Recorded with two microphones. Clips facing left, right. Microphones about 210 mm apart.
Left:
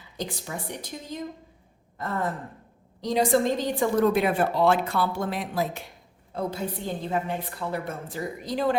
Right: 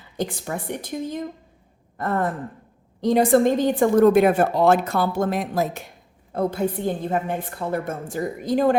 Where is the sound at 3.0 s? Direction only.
55° right (ahead or behind).